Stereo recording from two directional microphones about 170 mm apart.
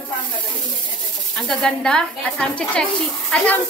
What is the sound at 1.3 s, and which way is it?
Speech, 5° left (ahead or behind).